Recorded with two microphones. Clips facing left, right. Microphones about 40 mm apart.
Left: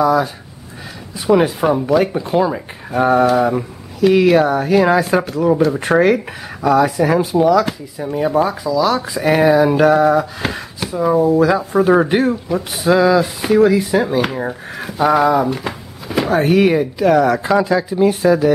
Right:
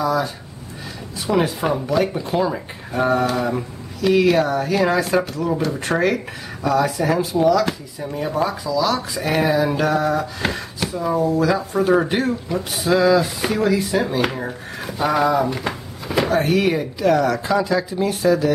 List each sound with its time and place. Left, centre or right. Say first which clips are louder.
0.0 s speech: left 6 dB; centre
14.4 s a sound: left 4 dB; centre
16.3 s speech: left 8 dB; centre